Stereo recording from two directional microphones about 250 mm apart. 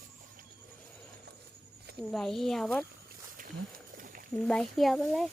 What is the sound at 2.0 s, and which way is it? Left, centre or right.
Speech, centre.